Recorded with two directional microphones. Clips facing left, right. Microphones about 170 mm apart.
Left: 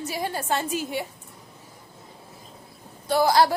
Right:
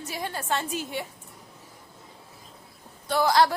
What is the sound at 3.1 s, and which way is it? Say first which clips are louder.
Speech: left 2 dB; 10° left (ahead or behind).